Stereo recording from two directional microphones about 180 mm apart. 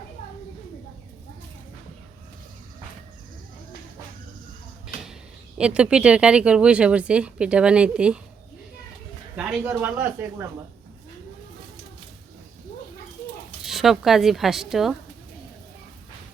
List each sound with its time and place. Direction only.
5.5 s speech: 5° right (ahead or behind)
9.3 s speech: 5° right (ahead or behind)
13.7 s speech: centre (ahead or behind)